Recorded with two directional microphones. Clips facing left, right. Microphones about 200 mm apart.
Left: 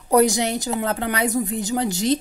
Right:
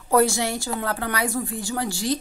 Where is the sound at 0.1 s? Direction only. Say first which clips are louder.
Left 3 dB; 20° left (ahead or behind).